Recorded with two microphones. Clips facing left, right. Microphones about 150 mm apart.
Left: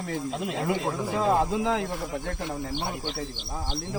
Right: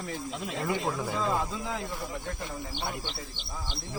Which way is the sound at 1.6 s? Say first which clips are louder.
Left 8 dB; 90° left.